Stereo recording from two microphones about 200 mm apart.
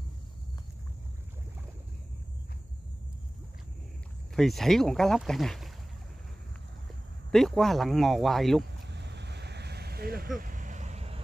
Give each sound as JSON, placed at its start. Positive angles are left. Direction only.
{"t": 4.4, "sound": "speech", "side_deg": 0}
{"t": 7.2, "sound": "speech", "side_deg": 0}
{"t": 8.8, "sound": "vehicle", "side_deg": -60}